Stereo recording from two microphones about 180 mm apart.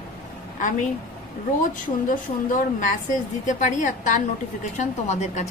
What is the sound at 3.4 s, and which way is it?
A woman's voice, 45° left (ahead or behind).